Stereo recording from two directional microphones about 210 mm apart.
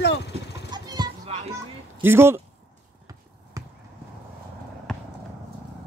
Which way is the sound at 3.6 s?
15° right (ahead or behind).